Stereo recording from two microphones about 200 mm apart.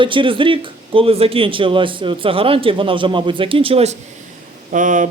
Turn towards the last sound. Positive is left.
turn(degrees=-40)  # may be behind; listen again after turning